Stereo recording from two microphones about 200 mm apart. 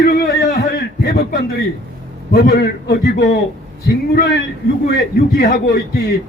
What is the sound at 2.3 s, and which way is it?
A man's voice, 55° left (ahead or behind).